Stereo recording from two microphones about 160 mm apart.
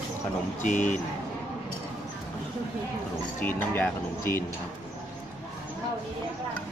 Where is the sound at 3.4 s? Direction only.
10° left (ahead or behind).